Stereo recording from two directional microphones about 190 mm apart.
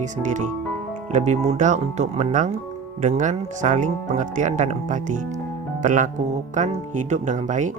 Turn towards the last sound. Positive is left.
turn(degrees=-40)  # may be behind; listen again after turning